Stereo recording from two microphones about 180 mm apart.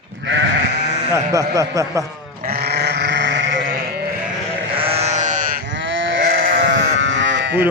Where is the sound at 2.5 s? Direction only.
65° right (ahead or behind); by 3.8 s 80° right.